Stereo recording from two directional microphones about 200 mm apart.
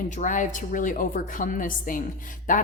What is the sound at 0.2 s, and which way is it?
A woman's voice, 40° left (ahead or behind).